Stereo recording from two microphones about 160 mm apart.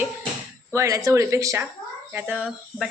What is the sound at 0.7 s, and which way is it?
A woman's voice, 20° right (ahead or behind).